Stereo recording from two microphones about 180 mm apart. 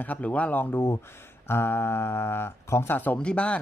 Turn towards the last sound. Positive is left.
turn(degrees=5)  # may be behind; listen again after turning